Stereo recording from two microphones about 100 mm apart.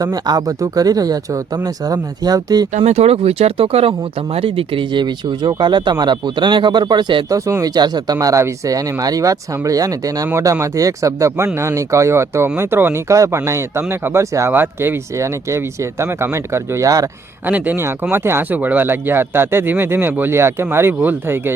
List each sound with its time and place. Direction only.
0.0 s speech: 40° right (ahead or behind)
2.8 s speech: 90° right; by 7.3 s 50° right (ahead or behind)
7.3 s speech: 30° right (ahead or behind)
17.4 s speech: 20° right (ahead or behind)